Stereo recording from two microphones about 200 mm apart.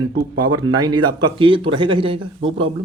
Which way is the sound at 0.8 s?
20° right (ahead or behind).